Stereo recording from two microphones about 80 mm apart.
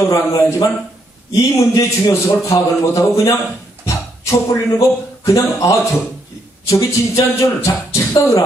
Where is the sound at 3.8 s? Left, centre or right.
Left.